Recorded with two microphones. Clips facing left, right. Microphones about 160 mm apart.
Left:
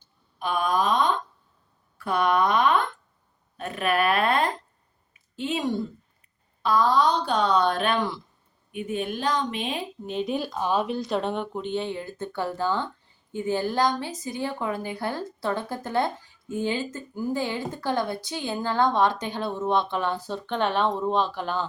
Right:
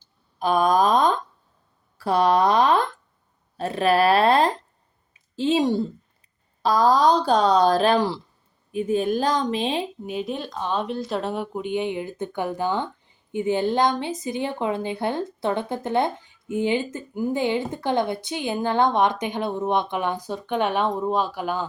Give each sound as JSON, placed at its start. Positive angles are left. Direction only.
{"t": 0.3, "sound": "speech", "side_deg": -40}
{"t": 2.0, "sound": "a sound", "side_deg": -35}
{"t": 3.6, "sound": "a woman's voice", "side_deg": -30}
{"t": 10.1, "sound": "speech", "side_deg": 0}